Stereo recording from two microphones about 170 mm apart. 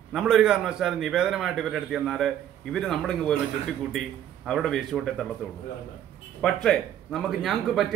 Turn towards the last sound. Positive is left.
turn(degrees=0)  # may be behind; listen again after turning